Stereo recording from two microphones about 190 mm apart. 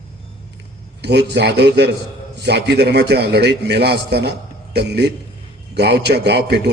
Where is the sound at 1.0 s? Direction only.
60° right (ahead or behind).